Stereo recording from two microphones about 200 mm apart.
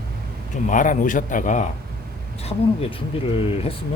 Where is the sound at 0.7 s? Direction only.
40° left (ahead or behind).